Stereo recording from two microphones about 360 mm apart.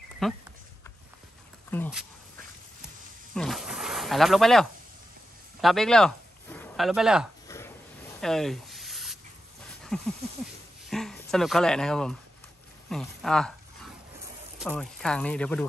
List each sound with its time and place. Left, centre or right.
0.2 s speech: centre
1.7 s speech: centre
3.3 s snake: centre
5.6 s speech: centre
7.4 s a sound: centre
9.9 s speech: centre
14.6 s speech: centre